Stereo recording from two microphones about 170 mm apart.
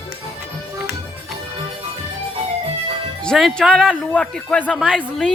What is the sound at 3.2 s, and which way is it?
Speech, centre (ahead or behind).